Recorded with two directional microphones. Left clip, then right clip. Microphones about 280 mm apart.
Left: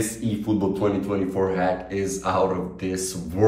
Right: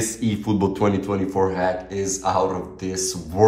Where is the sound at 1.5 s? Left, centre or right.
Centre.